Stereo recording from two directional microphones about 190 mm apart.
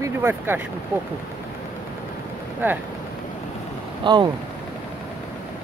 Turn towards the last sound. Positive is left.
turn(degrees=-25)  # may be behind; listen again after turning